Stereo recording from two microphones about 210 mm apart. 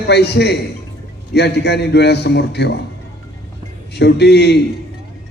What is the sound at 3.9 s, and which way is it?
Speech, 55° left (ahead or behind).